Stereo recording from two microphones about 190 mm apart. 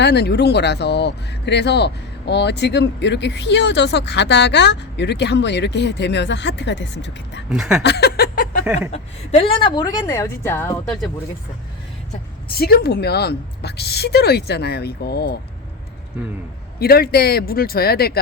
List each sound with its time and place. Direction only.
0.0 s speech: 60° left (ahead or behind)
7.5 s speech: centre (ahead or behind)
7.8 s a sound: 60° left (ahead or behind)
8.6 s speech: 5° right (ahead or behind)
8.9 s a woman's voice: 30° left (ahead or behind); by 10.8 s 10° left (ahead or behind)
12.5 s speech: 55° left (ahead or behind)
16.8 s speech: 55° left (ahead or behind)